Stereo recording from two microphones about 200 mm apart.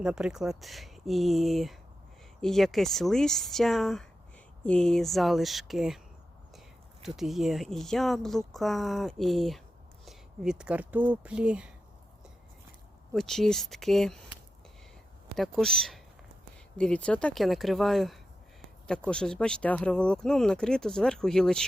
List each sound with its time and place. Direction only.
0.0 s speech: 5° right (ahead or behind)
7.0 s speech: centre (ahead or behind)
13.1 s speech: centre (ahead or behind)
15.4 s speech: centre (ahead or behind)